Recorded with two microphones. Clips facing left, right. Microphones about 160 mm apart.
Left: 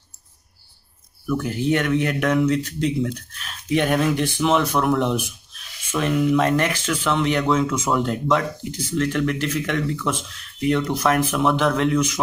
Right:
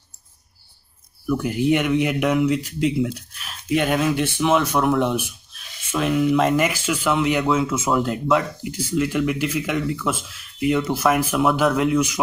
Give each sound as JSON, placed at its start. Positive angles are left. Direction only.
{"t": 1.3, "sound": "speech", "side_deg": -10}